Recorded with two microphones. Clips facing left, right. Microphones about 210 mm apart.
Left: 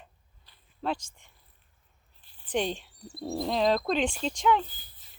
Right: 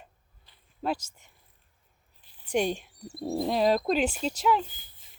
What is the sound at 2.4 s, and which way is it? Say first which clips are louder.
Speech: right 3 dB; 10° right (ahead or behind).